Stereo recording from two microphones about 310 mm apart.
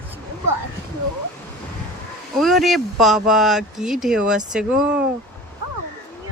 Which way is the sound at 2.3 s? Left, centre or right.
Centre.